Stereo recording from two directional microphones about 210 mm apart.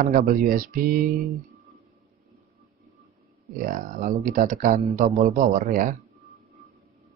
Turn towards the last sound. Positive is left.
turn(degrees=-40)  # may be behind; listen again after turning